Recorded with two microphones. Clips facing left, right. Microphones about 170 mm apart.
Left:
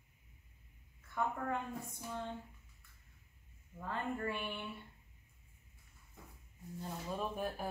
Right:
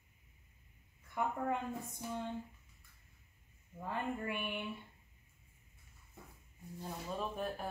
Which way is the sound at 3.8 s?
15° right (ahead or behind).